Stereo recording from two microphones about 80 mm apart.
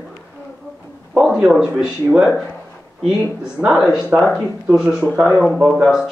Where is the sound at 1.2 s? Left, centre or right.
Centre.